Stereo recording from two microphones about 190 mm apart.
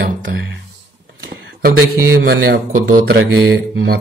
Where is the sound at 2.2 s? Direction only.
65° right (ahead or behind).